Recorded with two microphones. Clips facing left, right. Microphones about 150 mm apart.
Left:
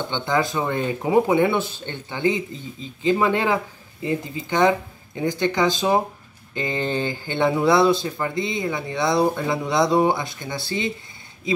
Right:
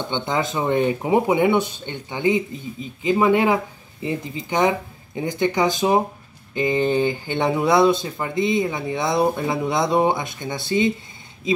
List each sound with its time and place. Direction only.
0.1 s speech: 20° right (ahead or behind)